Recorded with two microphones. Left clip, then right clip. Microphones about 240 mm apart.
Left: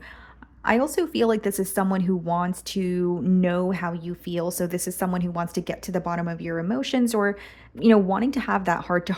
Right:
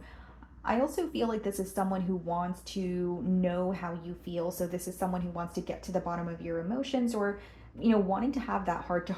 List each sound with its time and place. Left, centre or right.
0.6 s speech: left